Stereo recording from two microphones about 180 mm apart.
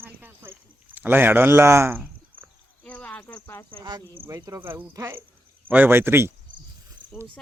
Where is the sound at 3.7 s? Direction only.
25° right (ahead or behind).